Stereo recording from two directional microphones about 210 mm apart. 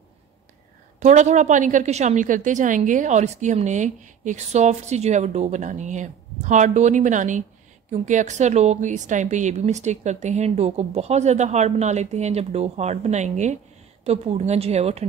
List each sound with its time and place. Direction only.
0.9 s a woman's voice: 35° right (ahead or behind)